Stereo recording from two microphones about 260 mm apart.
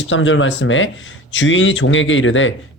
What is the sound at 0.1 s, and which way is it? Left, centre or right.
Speech, left.